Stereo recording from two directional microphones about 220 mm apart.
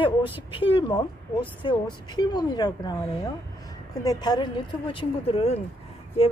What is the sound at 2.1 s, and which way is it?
Speech, 20° left (ahead or behind).